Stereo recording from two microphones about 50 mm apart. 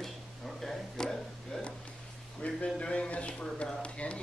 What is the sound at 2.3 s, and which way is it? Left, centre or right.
A man's voice, left.